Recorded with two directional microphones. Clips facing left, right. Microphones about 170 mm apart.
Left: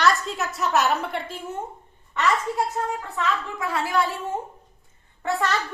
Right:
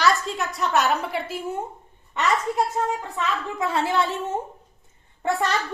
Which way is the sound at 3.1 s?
25° right (ahead or behind).